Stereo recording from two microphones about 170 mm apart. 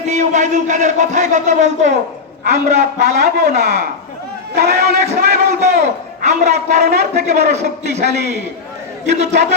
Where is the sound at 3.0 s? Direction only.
70° right (ahead or behind).